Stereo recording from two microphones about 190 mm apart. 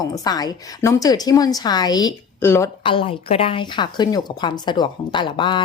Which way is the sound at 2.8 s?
25° left (ahead or behind).